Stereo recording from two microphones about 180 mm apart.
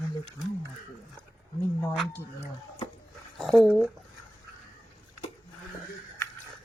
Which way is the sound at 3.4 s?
Centre (ahead or behind).